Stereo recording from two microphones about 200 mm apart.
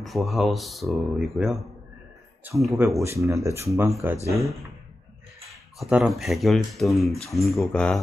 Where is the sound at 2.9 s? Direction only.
15° right (ahead or behind).